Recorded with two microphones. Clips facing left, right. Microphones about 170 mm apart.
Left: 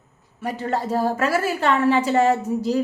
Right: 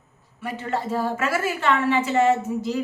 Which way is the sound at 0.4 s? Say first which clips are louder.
Left 3 dB; 40° left (ahead or behind).